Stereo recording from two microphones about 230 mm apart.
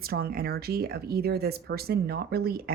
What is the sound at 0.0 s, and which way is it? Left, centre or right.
Speech, right.